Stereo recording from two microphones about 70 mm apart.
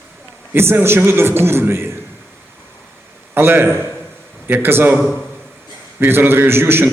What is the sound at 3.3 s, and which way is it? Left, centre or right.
A man's voice, right.